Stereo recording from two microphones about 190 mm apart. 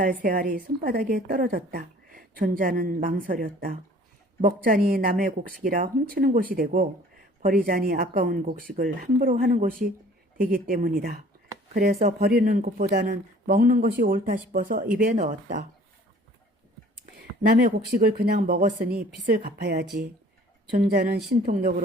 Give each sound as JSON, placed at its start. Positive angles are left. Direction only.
{"t": 0.0, "sound": "a woman's voice", "side_deg": -45}
{"t": 17.9, "sound": "a woman's voice", "side_deg": -55}